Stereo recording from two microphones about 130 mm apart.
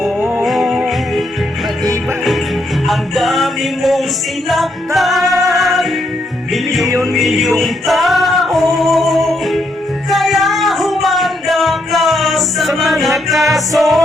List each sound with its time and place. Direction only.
0.4 s music: centre (ahead or behind)
2.8 s music: centre (ahead or behind)
6.8 s music: 25° right (ahead or behind)
7.1 s music: centre (ahead or behind)